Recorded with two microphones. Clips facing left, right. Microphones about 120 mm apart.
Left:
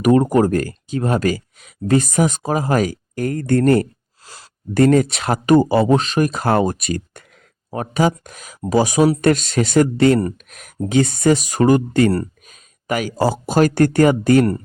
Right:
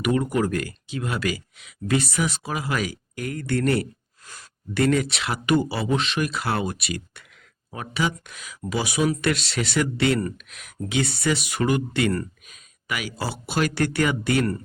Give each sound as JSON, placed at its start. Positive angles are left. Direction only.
{"t": 0.0, "sound": "speech", "side_deg": 40}